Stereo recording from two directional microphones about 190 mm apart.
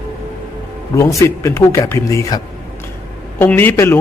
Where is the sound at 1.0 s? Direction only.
15° left (ahead or behind).